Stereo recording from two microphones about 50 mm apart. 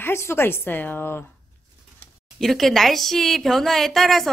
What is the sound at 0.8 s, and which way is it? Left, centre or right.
Speech, left.